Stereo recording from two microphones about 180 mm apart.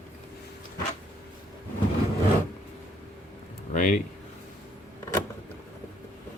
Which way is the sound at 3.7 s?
45° left (ahead or behind).